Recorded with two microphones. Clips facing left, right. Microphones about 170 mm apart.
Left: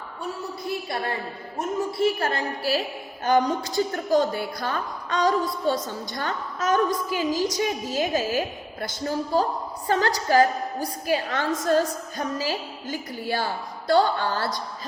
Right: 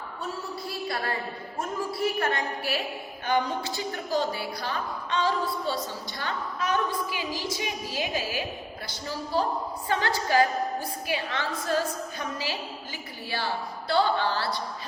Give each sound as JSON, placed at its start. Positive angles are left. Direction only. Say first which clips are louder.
{"t": 1.5, "sound": "a woman's voice", "louder": "left 5 dB", "side_deg": 25}